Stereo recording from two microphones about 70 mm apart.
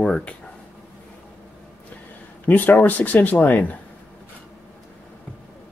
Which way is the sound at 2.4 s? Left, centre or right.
Left.